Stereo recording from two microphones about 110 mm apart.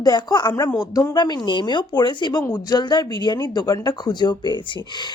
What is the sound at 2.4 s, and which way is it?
Speech, 30° left (ahead or behind).